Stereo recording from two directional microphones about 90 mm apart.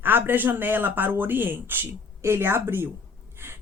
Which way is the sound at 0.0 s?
25° right (ahead or behind).